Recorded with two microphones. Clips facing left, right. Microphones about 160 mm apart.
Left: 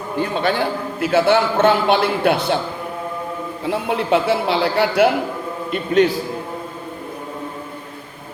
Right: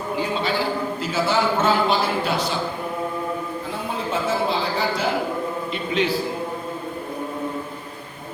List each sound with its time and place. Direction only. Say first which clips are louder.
0.2 s a man's voice: left 5 dB; 55° left (ahead or behind)
3.7 s a woman's voice: left 11 dB; 70° left (ahead or behind)
5.7 s a man's voice: left 9 dB; 50° left (ahead or behind)